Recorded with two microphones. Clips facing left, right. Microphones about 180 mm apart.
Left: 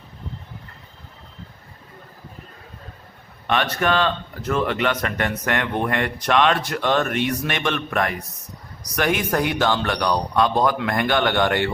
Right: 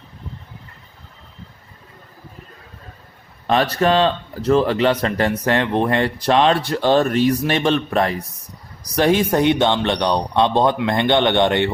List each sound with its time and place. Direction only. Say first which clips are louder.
3.4 s speech: right 4 dB; 35° right (ahead or behind)